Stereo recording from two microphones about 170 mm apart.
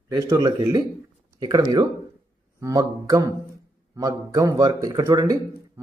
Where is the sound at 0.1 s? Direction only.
20° right (ahead or behind).